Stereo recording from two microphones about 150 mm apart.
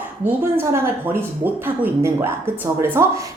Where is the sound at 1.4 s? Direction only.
15° right (ahead or behind).